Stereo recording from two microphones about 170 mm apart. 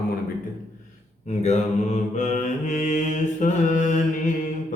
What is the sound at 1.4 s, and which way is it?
Mantra, 45° left (ahead or behind).